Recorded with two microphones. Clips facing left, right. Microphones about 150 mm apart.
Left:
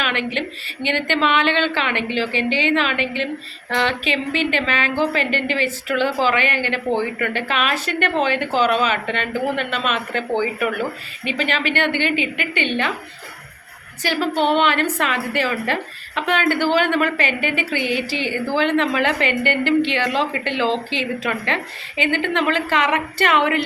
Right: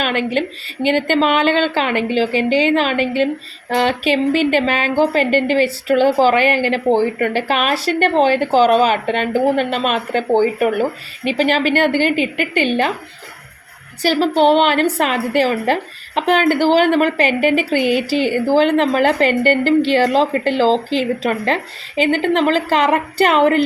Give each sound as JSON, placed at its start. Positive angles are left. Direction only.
{"t": 0.3, "sound": "a woman's voice", "side_deg": -40}
{"t": 14.1, "sound": "a woman's voice", "side_deg": -35}